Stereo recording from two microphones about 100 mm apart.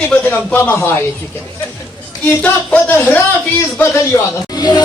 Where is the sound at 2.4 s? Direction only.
15° left (ahead or behind).